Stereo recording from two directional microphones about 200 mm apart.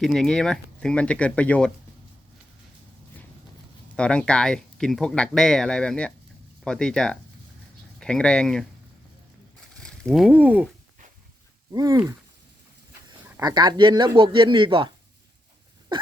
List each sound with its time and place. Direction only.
0.0 s speech: centre (ahead or behind)
3.9 s speech: 5° left (ahead or behind)
9.8 s speech: 5° left (ahead or behind)
11.7 s speech: 20° right (ahead or behind)
13.3 s speech: 20° right (ahead or behind)